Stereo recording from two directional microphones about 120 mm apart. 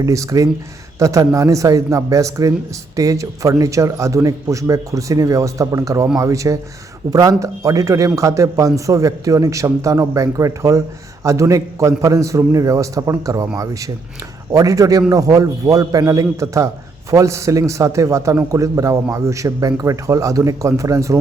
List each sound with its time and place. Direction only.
0.0 s a man's voice: 25° right (ahead or behind)
14.5 s a man's voice: 30° right (ahead or behind)